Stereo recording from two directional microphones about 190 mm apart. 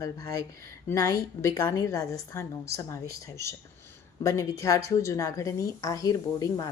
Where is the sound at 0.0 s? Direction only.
15° left (ahead or behind).